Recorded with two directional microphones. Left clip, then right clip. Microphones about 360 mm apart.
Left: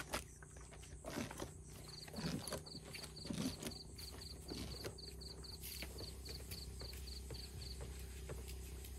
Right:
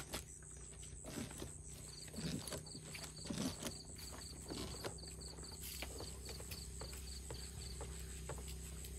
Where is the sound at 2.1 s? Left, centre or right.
Centre.